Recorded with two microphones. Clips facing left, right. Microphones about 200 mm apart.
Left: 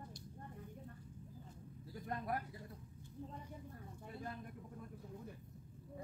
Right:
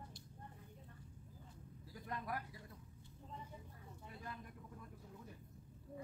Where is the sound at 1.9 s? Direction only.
40° left (ahead or behind).